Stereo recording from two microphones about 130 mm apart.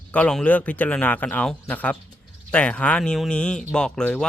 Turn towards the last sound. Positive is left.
turn(degrees=5)  # may be behind; listen again after turning